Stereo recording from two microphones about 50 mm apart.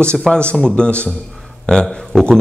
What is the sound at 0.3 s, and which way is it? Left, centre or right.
Speech, left.